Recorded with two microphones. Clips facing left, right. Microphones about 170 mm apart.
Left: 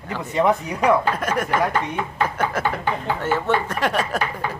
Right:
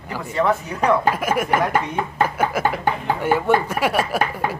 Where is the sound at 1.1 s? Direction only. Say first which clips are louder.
Right 2 dB; 10° right (ahead or behind).